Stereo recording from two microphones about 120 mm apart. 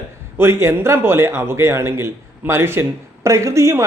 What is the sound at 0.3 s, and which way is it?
Speech, 20° right (ahead or behind).